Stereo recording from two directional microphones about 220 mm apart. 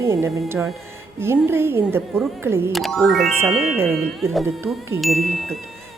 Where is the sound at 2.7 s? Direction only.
Centre (ahead or behind).